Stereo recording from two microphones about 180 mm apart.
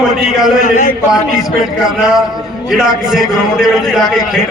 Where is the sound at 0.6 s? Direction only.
45° left (ahead or behind).